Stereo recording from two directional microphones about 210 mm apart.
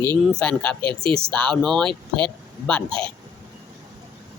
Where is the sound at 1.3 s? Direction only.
5° left (ahead or behind).